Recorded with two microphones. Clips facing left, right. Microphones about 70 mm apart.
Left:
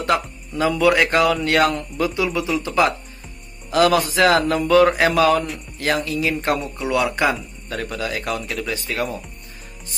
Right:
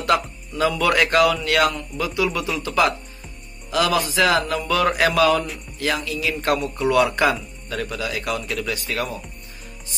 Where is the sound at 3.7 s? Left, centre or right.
Left.